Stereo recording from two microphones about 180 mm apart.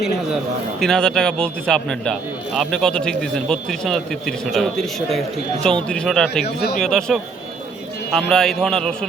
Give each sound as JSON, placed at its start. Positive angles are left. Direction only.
{"t": 0.8, "sound": "a man's voice", "side_deg": 5}